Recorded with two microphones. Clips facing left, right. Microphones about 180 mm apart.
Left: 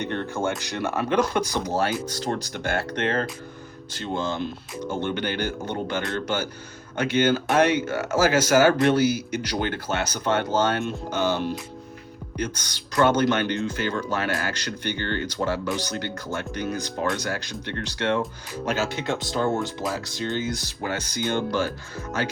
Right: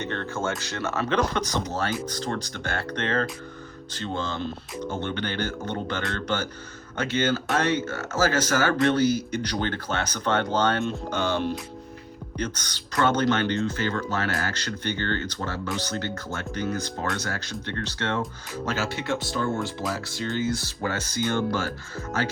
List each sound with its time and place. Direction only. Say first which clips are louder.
0.0 s speech: left 3 dB; 15° left (ahead or behind)